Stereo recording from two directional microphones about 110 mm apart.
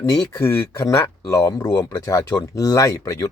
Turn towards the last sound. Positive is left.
turn(degrees=30)  # may be behind; listen again after turning